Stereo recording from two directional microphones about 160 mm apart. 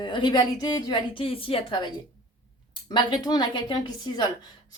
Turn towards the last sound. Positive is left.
turn(degrees=25)  # may be behind; listen again after turning